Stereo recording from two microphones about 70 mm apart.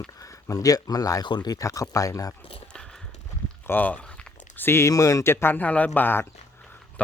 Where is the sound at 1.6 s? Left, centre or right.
Left.